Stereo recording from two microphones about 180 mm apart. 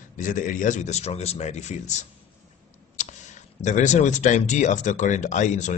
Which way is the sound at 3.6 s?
40° left (ahead or behind).